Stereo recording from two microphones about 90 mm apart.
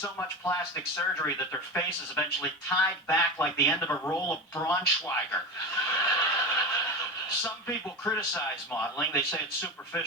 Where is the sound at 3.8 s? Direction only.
25° left (ahead or behind).